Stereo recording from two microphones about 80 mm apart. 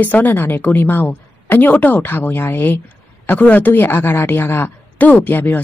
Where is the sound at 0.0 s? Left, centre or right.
Left.